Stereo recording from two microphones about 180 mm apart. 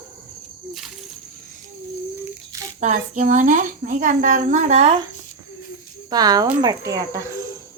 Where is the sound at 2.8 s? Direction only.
45° right (ahead or behind).